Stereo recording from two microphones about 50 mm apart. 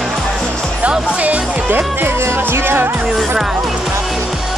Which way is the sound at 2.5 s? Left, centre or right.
Right.